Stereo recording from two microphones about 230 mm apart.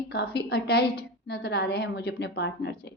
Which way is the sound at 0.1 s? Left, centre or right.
Left.